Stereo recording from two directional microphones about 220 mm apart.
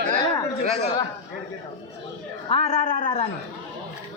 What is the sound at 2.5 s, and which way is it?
Speech, 30° left (ahead or behind).